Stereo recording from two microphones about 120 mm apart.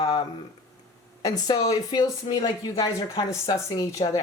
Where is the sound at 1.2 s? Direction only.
30° left (ahead or behind).